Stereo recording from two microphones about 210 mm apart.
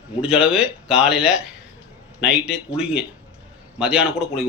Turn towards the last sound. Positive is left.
turn(degrees=-5)  # may be behind; listen again after turning